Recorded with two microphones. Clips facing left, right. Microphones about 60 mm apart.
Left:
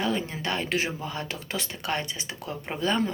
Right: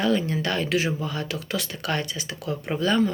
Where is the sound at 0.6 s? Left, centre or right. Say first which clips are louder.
Right 4 dB; left.